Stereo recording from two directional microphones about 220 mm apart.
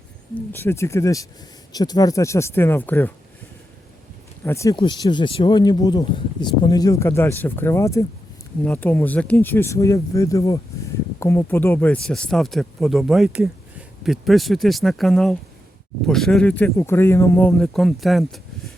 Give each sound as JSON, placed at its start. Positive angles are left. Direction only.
{"t": 0.3, "sound": "speech", "side_deg": 10}
{"t": 4.4, "sound": "speech", "side_deg": 15}